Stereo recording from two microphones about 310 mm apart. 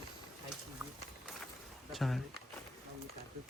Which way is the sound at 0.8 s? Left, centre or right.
Centre.